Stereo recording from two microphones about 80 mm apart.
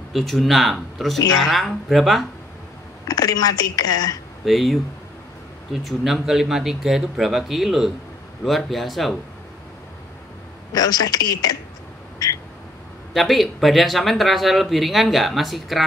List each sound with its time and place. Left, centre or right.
0.1 s speech: centre
3.1 s speech: left
4.5 s speech: centre
10.7 s speech: left
13.1 s speech: centre